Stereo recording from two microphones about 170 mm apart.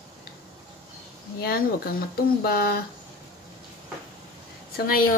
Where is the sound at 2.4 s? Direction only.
65° left (ahead or behind).